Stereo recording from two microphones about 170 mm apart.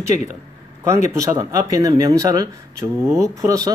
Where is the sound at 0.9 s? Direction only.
15° right (ahead or behind).